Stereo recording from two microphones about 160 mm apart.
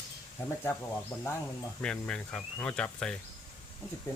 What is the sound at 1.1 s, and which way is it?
Speech, 15° left (ahead or behind).